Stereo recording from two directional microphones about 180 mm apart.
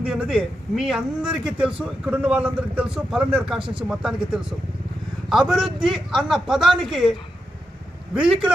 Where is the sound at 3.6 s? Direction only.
30° right (ahead or behind).